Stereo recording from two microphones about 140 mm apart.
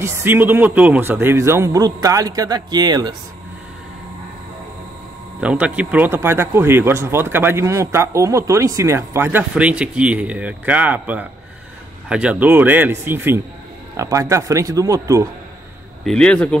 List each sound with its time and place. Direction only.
0.0 s a man's voice: 15° right (ahead or behind)
5.4 s a man's voice: 10° right (ahead or behind)
16.0 s a man's voice: 5° left (ahead or behind)